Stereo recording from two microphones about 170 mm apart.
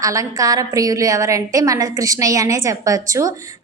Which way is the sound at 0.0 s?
20° right (ahead or behind).